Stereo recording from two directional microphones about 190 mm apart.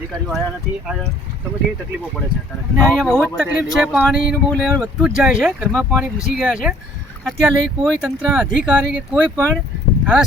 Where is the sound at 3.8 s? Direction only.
5° right (ahead or behind).